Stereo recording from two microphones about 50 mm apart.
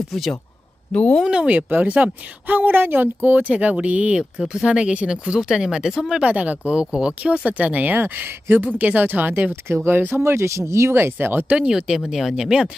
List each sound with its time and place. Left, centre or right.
0.1 s speech: centre
0.9 s speech: centre
1.2 s speech: centre
1.5 s speech: right
4.2 s speech: centre
4.6 s speech: right
6.2 s speech: right
10.2 s speech: right
11.1 s speech: right
11.5 s speech: centre